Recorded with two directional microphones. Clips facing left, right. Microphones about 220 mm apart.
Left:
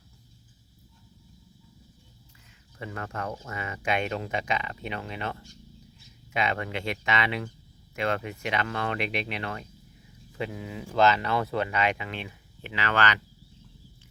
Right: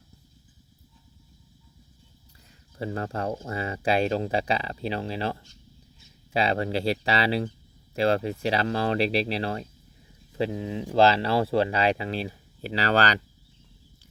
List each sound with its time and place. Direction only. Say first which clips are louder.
2.7 s speech: right 6 dB; 30° right (ahead or behind)